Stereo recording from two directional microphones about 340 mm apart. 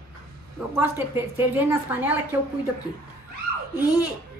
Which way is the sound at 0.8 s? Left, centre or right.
Centre.